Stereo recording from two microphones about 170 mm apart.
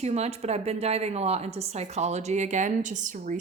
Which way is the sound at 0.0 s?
40° right (ahead or behind).